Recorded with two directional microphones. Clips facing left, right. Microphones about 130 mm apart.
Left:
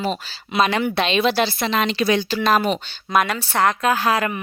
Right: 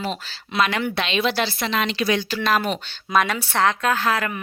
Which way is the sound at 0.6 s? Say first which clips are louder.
Left 3 dB; 30° left (ahead or behind).